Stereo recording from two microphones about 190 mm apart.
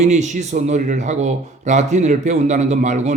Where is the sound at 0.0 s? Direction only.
40° right (ahead or behind).